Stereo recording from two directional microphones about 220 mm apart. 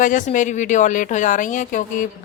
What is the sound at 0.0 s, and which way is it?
A woman's voice, 35° left (ahead or behind).